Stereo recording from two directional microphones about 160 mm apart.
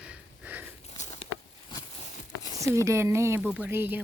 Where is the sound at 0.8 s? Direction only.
45° left (ahead or behind).